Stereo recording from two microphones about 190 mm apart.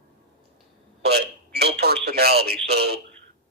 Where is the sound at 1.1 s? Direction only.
55° right (ahead or behind).